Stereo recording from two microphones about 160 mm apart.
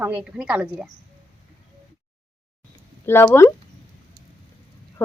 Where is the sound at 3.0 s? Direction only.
15° left (ahead or behind).